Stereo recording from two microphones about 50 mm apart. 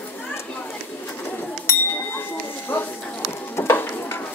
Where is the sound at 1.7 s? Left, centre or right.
Left.